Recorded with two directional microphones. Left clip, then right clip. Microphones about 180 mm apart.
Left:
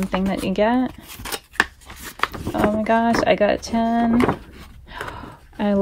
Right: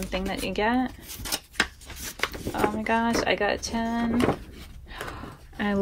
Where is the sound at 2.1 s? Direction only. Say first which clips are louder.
Left 6 dB; 25° left (ahead or behind).